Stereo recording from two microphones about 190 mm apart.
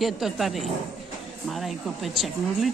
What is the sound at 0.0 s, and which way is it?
A woman's voice, centre (ahead or behind).